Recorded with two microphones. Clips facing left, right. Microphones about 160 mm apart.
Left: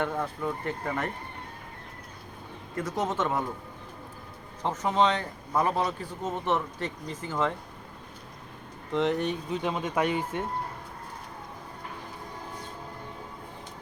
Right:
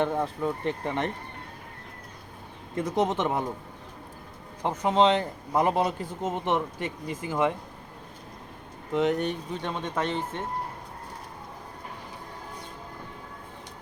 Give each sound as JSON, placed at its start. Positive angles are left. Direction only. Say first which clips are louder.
{"t": 0.0, "sound": "speech", "louder": "right 3 dB", "side_deg": -25}
{"t": 2.7, "sound": "speech", "louder": "right 3 dB", "side_deg": -20}
{"t": 4.6, "sound": "a man's voice", "louder": "right 3 dB", "side_deg": -15}
{"t": 8.9, "sound": "speech", "louder": "right 1 dB", "side_deg": -5}